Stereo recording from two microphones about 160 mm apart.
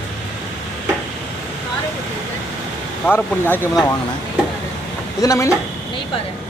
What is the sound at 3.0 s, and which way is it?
Speech, 10° left (ahead or behind).